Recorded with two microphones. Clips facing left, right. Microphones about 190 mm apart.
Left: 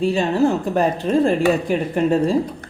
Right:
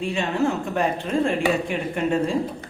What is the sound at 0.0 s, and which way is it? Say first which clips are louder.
A woman's voice: left 6 dB; 35° left (ahead or behind).